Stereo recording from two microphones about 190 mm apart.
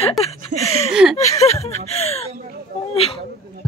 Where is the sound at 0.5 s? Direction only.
70° right (ahead or behind).